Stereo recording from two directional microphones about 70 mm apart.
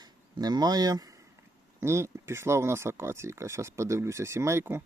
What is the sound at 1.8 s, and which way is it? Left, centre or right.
Speech, right.